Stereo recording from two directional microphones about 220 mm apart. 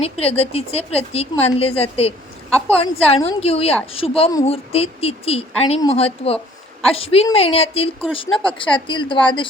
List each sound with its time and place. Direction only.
0.0 s speech: 25° left (ahead or behind)